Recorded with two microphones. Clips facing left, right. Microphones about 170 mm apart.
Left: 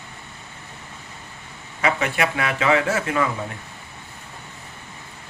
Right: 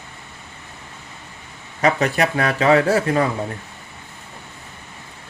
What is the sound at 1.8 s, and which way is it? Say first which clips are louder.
Speech: right 4 dB; 40° right (ahead or behind).